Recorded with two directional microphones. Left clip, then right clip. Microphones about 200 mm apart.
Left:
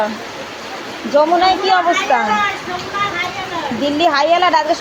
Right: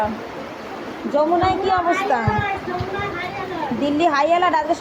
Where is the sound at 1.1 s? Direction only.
20° left (ahead or behind).